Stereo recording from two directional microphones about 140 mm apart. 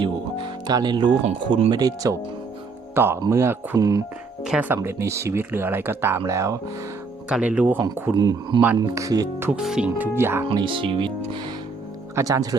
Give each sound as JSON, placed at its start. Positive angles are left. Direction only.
{"t": 0.7, "sound": "speech", "side_deg": -30}
{"t": 2.9, "sound": "speech", "side_deg": -15}
{"t": 4.4, "sound": "speech", "side_deg": -5}
{"t": 4.8, "sound": "speech", "side_deg": -20}
{"t": 7.3, "sound": "speech", "side_deg": -10}
{"t": 8.1, "sound": "speech", "side_deg": -30}
{"t": 9.5, "sound": "speech", "side_deg": -5}
{"t": 10.5, "sound": "speech", "side_deg": -35}
{"t": 12.1, "sound": "speech", "side_deg": -25}